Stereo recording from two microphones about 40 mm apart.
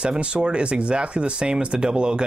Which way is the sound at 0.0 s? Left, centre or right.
Right.